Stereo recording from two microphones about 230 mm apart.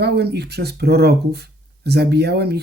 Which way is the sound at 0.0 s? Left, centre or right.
Right.